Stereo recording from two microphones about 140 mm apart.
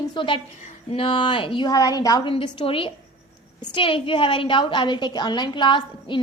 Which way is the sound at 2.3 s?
40° left (ahead or behind).